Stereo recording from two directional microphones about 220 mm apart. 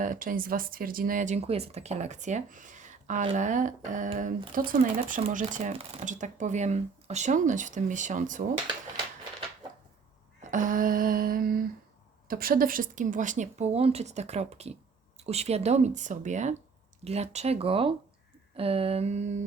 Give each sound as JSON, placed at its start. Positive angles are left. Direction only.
{"t": 0.0, "sound": "speech", "side_deg": -35}
{"t": 10.5, "sound": "speech", "side_deg": -35}